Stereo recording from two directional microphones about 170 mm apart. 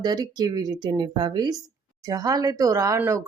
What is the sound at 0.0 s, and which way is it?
Speech, 25° right (ahead or behind).